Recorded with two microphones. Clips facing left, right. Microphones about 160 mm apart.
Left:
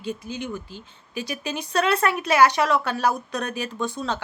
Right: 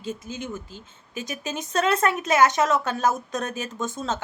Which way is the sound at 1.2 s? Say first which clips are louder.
Left 1 dB; 45° right (ahead or behind).